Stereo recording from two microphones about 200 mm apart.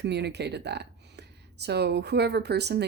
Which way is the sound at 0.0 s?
55° right (ahead or behind).